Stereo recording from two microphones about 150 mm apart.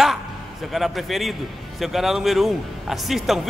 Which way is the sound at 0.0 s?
Centre (ahead or behind).